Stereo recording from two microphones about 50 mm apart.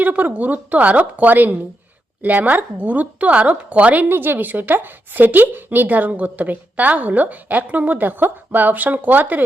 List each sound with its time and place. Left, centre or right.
0.0 s speech: right
4.1 s speech: right